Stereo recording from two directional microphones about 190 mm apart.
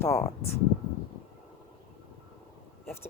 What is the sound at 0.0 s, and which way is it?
Speech, 15° left (ahead or behind).